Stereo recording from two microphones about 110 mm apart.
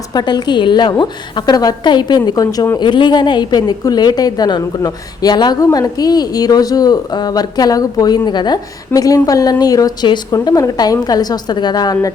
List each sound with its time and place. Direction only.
0.1 s a woman's voice: 40° left (ahead or behind)